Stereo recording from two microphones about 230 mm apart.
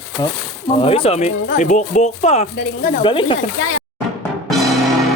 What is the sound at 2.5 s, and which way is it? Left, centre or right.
Speech, left.